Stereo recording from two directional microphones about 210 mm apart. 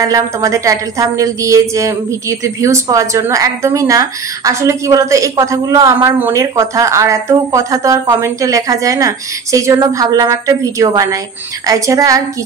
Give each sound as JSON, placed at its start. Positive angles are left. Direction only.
{"t": 0.0, "sound": "a woman's voice", "side_deg": -15}